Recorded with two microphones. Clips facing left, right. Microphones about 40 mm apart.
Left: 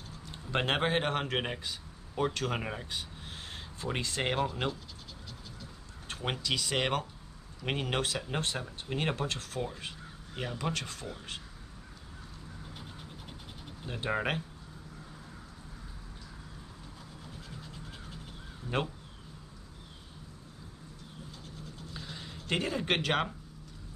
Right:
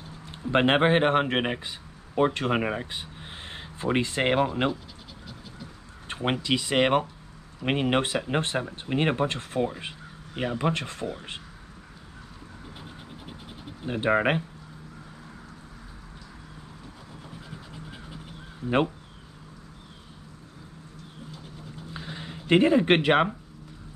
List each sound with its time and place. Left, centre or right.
0.3 s speech: right
6.0 s speech: right
12.7 s vehicle: centre
13.8 s speech: right
21.9 s a sound: right